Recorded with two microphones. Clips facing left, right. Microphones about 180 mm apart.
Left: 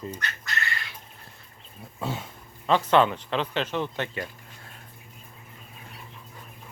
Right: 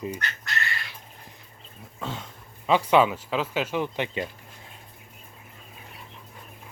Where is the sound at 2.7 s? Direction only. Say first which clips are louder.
Right 1 dB; 10° right (ahead or behind).